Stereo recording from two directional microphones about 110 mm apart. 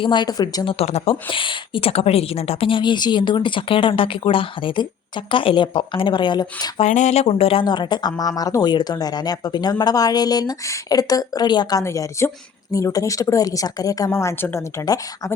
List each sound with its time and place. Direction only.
0.0 s speech: 45° left (ahead or behind)
0.6 s a woman's voice: 60° left (ahead or behind); by 6.7 s 40° left (ahead or behind)
6.7 s speech: 85° left; by 7.6 s 60° left (ahead or behind)
7.6 s speech: 45° left (ahead or behind)